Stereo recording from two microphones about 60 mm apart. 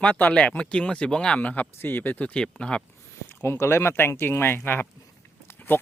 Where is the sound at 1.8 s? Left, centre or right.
Left; by 2.8 s centre.